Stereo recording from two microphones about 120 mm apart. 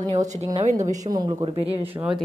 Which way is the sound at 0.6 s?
85° right.